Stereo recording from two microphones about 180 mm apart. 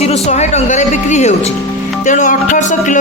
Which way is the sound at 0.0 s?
35° left (ahead or behind).